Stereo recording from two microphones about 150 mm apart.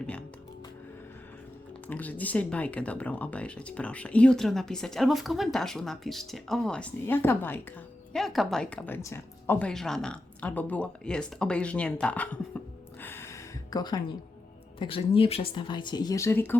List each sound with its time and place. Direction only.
1.9 s speech: 10° left (ahead or behind)
8.1 s a woman's voice: centre (ahead or behind)
13.0 s a sound: 15° left (ahead or behind)
14.8 s speech: 35° left (ahead or behind); by 16.6 s 15° left (ahead or behind)